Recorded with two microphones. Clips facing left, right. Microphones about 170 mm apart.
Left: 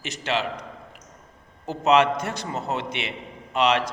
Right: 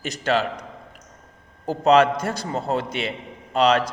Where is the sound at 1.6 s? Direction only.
35° right (ahead or behind).